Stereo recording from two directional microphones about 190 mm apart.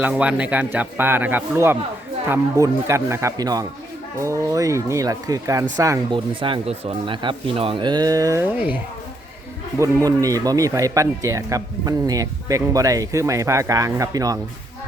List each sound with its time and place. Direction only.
0.0 s speech: 5° right (ahead or behind)